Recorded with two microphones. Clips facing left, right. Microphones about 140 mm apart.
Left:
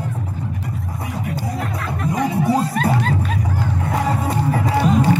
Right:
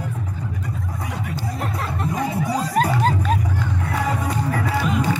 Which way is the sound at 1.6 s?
30° right (ahead or behind).